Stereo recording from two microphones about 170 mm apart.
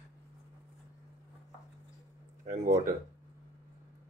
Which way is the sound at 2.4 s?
50° right (ahead or behind).